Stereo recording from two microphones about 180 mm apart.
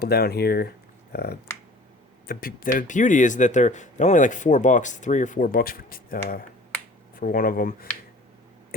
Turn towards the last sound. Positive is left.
turn(degrees=55)  # may be behind; listen again after turning